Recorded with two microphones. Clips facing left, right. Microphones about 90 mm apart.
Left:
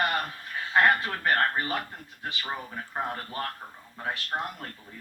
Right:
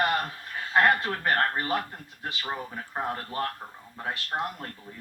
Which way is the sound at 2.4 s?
Centre (ahead or behind).